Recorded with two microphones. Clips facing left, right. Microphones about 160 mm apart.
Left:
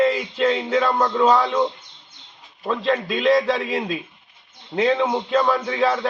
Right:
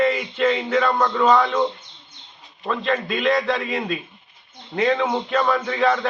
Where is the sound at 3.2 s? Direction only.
5° left (ahead or behind).